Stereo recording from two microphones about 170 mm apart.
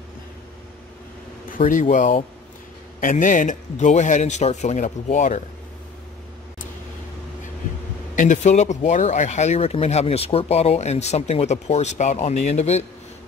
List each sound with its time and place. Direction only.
1.5 s a man's voice: 50° left (ahead or behind)
8.2 s speech: 45° left (ahead or behind)